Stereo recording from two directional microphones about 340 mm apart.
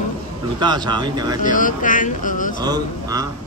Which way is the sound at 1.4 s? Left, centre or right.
Left.